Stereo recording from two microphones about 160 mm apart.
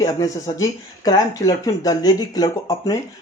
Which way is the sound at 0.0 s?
20° left (ahead or behind).